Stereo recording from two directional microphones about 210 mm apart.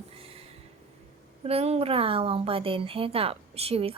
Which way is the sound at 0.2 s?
25° right (ahead or behind).